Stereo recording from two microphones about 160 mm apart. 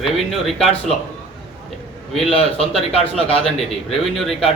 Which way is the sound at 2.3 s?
35° left (ahead or behind).